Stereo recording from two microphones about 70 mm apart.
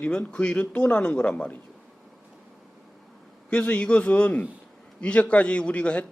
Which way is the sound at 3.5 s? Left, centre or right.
Centre.